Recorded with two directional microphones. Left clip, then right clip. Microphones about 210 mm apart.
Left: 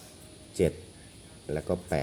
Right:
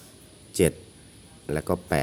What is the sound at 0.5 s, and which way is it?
Speech, 30° right (ahead or behind).